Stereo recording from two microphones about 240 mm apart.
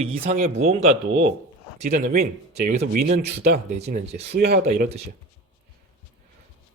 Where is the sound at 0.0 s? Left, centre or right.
Right.